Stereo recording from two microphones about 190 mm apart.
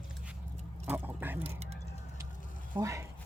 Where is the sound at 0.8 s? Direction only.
10° right (ahead or behind).